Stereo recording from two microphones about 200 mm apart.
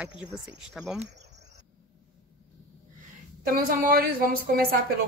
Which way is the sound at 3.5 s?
50° right (ahead or behind).